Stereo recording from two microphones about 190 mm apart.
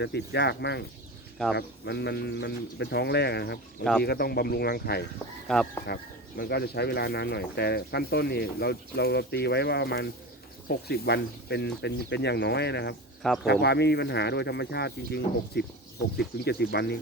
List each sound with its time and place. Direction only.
0.0 s speech: 60° left (ahead or behind)
5.5 s speech: centre (ahead or behind)
5.8 s speech: 55° left (ahead or behind)